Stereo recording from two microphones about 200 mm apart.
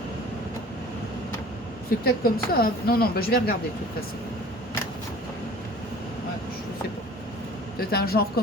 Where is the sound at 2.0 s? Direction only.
50° left (ahead or behind).